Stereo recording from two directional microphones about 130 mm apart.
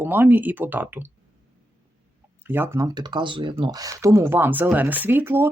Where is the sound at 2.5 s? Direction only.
15° right (ahead or behind).